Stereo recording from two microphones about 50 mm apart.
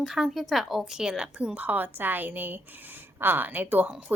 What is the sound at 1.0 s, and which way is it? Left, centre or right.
Speech, centre.